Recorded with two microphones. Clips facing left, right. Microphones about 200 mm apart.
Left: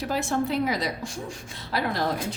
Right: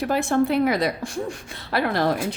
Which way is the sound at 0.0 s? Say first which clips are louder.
Right 5 dB; 60° right (ahead or behind).